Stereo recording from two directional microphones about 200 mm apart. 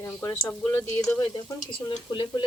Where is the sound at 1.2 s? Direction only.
20° left (ahead or behind).